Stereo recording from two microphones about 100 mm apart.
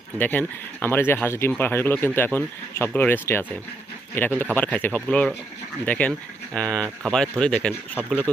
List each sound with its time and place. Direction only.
0.2 s speech: 20° left (ahead or behind)